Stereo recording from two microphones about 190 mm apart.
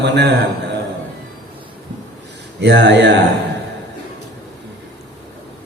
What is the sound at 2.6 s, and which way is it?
Speech, 65° right (ahead or behind).